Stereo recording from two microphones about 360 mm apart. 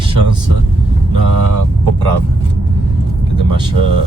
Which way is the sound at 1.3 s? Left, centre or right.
Right.